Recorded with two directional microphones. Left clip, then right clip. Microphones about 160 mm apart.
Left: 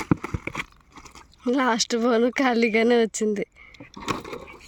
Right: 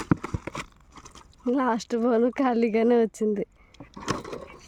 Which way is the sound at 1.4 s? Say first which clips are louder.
Left 3 dB; 5° right (ahead or behind).